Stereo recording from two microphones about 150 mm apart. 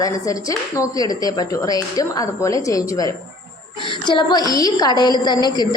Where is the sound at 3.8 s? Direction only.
35° left (ahead or behind).